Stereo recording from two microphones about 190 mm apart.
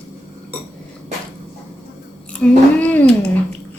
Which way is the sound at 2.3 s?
5° left (ahead or behind).